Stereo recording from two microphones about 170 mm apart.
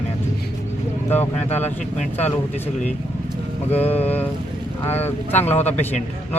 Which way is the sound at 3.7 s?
10° left (ahead or behind).